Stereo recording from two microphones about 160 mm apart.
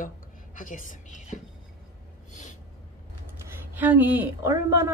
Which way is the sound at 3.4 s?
15° right (ahead or behind).